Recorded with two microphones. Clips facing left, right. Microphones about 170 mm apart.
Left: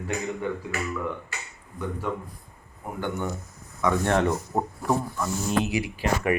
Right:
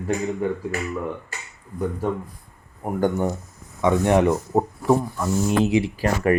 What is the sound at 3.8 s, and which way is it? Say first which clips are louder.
Speech: right 5 dB; 15° right (ahead or behind).